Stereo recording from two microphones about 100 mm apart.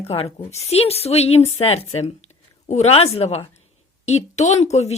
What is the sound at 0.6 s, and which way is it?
Speech, 90° left.